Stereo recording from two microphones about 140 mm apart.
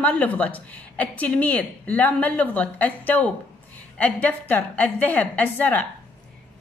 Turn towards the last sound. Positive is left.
turn(degrees=10)  # may be behind; listen again after turning